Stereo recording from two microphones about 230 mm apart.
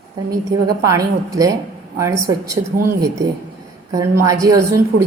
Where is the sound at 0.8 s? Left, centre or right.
Centre.